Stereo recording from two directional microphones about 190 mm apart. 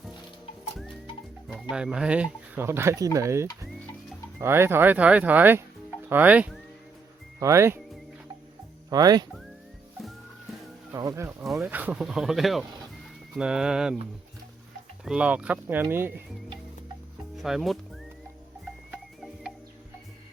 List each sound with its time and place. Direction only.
1.7 s speech: 5° right (ahead or behind)
8.9 s speech: 20° right (ahead or behind)
10.9 s speech: 15° right (ahead or behind)
11.4 s speech: centre (ahead or behind)
15.0 s speech: 5° right (ahead or behind)
17.3 s speech: centre (ahead or behind)
18.9 s music: 5° right (ahead or behind)